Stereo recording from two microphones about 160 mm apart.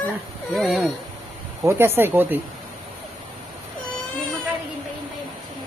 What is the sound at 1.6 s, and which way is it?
Speech, 15° right (ahead or behind).